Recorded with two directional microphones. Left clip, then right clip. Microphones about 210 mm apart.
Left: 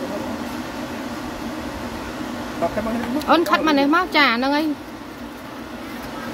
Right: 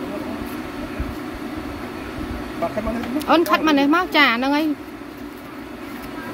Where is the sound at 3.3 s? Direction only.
5° right (ahead or behind).